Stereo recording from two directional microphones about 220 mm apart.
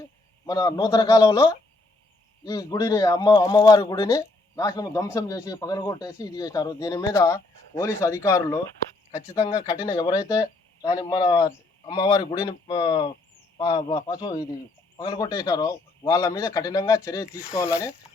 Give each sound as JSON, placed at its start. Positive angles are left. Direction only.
{"t": 0.4, "sound": "speech", "side_deg": 15}
{"t": 10.8, "sound": "a man's voice", "side_deg": 15}
{"t": 17.2, "sound": "speech", "side_deg": -5}